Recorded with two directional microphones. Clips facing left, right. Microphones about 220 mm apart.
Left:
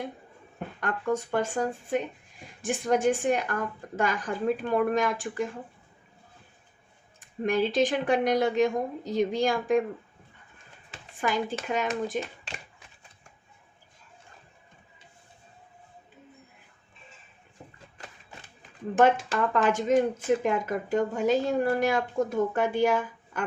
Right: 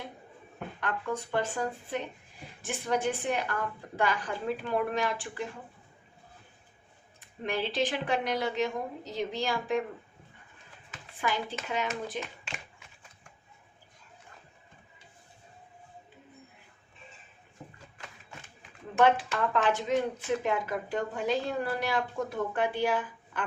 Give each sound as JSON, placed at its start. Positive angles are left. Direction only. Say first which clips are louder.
{"t": 0.8, "sound": "speech", "louder": "left 5 dB", "side_deg": 45}
{"t": 2.6, "sound": "speech", "louder": "left 5 dB", "side_deg": 45}
{"t": 7.4, "sound": "speech", "louder": "left 6 dB", "side_deg": 45}
{"t": 10.9, "sound": "speech", "louder": "left 4 dB", "side_deg": 45}
{"t": 18.9, "sound": "speech", "louder": "left 3 dB", "side_deg": 45}